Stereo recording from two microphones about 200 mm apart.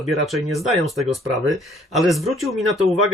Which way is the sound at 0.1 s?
Centre (ahead or behind).